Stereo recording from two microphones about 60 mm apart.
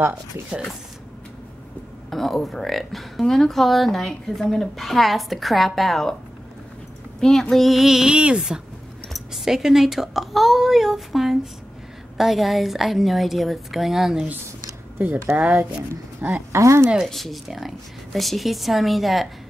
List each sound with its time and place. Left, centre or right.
2.0 s speech: centre
7.2 s a woman's voice: centre
15.2 s speech: centre
16.2 s speech: right
16.5 s speech: right
17.1 s speech: centre